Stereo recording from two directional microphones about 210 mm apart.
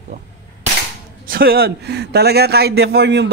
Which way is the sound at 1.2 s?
45° right (ahead or behind).